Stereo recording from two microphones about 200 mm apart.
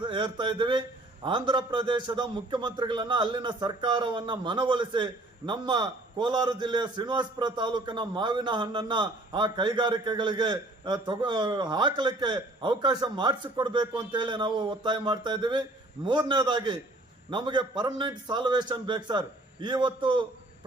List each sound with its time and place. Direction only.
0.0 s a man's voice: 25° right (ahead or behind)